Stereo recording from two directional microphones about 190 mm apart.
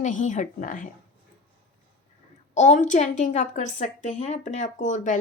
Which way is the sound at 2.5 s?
40° left (ahead or behind).